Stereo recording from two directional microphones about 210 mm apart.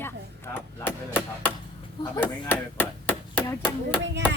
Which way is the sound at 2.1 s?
10° left (ahead or behind).